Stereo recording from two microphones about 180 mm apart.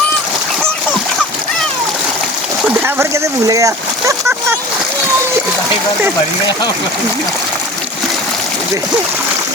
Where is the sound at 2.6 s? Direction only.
10° right (ahead or behind).